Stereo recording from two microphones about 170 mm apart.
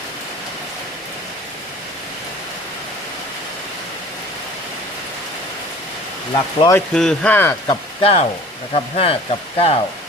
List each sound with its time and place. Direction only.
6.3 s speech: 25° left (ahead or behind)
6.7 s speech: 5° left (ahead or behind)
8.0 s speech: 35° left (ahead or behind)